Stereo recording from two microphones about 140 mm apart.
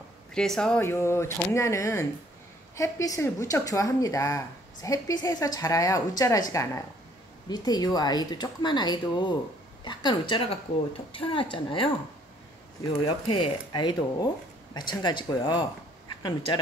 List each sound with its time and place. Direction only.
0.3 s speech: 5° left (ahead or behind)
0.7 s a woman's voice: 20° left (ahead or behind); by 11.9 s 40° left (ahead or behind)
13.0 s speech: 40° left (ahead or behind)